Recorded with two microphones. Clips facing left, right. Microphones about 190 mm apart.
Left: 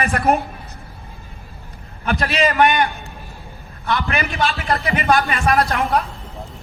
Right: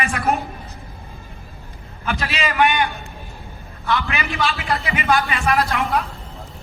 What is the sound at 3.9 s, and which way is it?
A man's voice, 40° left (ahead or behind).